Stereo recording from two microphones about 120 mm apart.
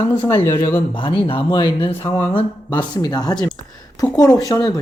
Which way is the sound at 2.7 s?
35° left (ahead or behind).